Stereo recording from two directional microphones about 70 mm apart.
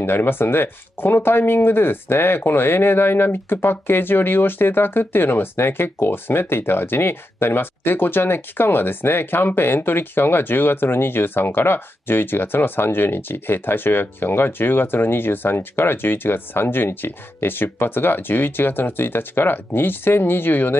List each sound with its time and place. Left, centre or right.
0.0 s speech: left